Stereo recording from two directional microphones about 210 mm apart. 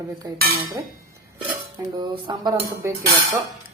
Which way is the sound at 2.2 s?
20° right (ahead or behind).